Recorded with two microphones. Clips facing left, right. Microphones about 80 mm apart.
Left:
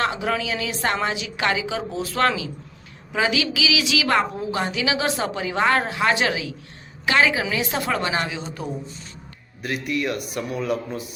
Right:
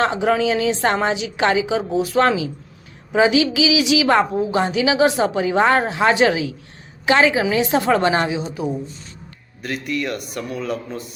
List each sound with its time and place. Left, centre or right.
0.0 s a woman's voice: right
8.4 s speech: centre
9.6 s a man's voice: centre